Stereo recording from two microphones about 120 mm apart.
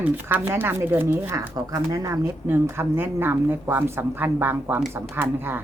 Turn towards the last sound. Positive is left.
turn(degrees=-20)  # may be behind; listen again after turning